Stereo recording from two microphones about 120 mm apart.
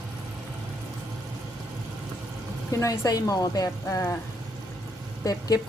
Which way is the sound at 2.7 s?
30° left (ahead or behind).